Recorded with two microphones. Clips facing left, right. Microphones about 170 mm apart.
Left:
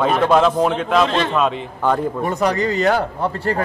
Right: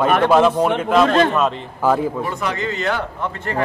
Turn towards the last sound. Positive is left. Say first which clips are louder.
# left 5 dB
turn(degrees=35)  # may be behind; listen again after turning